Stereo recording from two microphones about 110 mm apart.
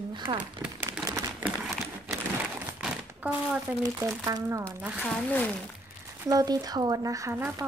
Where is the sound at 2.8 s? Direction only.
10° right (ahead or behind).